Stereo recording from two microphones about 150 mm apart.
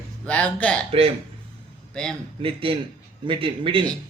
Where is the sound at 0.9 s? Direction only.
40° right (ahead or behind).